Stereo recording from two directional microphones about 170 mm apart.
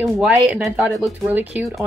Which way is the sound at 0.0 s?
Centre (ahead or behind).